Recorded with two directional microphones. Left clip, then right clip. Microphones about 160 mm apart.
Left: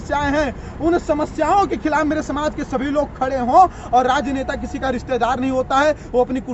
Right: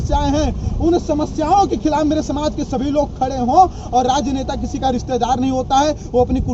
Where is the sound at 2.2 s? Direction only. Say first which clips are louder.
Right 2 dB; 20° left (ahead or behind).